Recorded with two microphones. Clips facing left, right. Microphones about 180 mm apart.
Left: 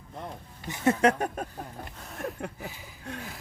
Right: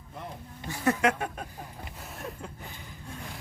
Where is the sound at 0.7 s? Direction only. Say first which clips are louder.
Even; 20° left (ahead or behind).